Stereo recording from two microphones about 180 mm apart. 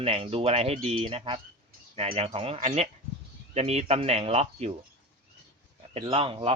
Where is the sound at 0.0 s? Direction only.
35° right (ahead or behind).